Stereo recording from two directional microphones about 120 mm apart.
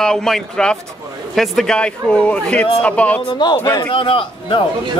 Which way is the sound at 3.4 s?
35° left (ahead or behind).